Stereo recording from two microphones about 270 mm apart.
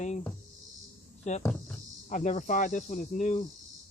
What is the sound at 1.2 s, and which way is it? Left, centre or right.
Speech, left.